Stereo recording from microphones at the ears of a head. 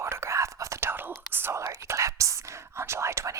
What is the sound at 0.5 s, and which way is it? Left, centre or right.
Whispering, right.